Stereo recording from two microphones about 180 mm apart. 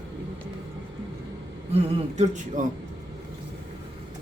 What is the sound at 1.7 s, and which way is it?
Speech, 40° right (ahead or behind).